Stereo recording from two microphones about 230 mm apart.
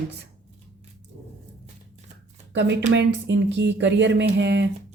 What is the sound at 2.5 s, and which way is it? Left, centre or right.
A woman's voice, right.